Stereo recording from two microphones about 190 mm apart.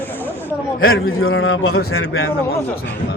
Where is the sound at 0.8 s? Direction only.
90° left.